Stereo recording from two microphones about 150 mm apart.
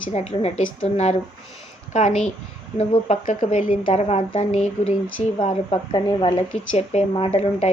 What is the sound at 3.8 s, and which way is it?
A woman's voice, 45° left (ahead or behind).